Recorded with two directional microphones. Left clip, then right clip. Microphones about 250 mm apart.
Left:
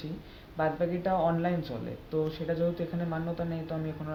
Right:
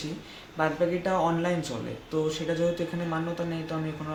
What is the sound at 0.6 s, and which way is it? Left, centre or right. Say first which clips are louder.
Speech: right 3 dB; centre.